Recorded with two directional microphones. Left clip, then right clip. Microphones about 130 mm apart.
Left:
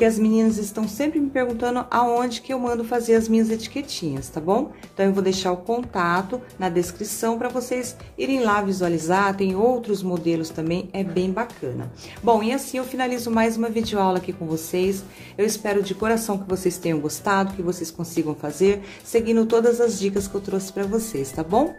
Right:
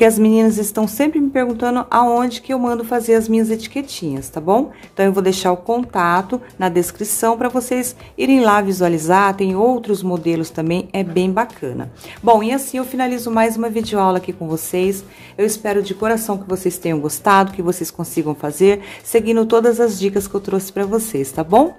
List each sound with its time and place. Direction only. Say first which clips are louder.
0.2 s speech: right 7 dB; 40° right (ahead or behind)
12.3 s speech: right 6 dB; 25° right (ahead or behind)